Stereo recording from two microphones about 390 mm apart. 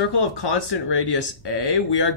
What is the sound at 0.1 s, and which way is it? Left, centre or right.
Speech, left.